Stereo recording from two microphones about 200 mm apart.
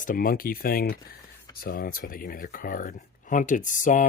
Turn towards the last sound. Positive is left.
turn(degrees=40)  # may be behind; listen again after turning